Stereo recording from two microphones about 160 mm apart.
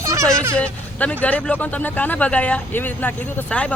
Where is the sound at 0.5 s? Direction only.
10° left (ahead or behind).